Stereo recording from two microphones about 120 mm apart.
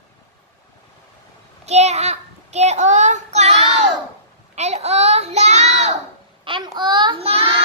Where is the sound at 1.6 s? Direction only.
65° right (ahead or behind).